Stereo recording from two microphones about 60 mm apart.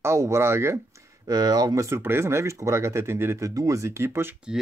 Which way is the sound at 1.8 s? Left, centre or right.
Right.